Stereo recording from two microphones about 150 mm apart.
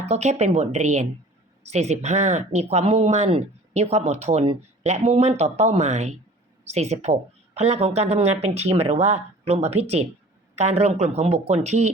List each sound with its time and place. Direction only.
0.0 s speech: 45° right (ahead or behind)